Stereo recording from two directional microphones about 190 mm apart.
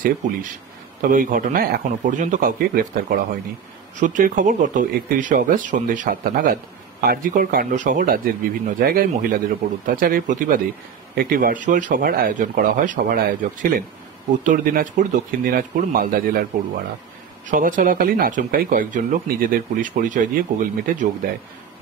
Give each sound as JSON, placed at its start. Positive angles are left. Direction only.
{"t": 0.0, "sound": "speech", "side_deg": -45}